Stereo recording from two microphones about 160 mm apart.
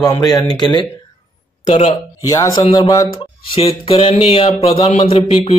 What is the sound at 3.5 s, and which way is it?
A man's voice, 35° left (ahead or behind).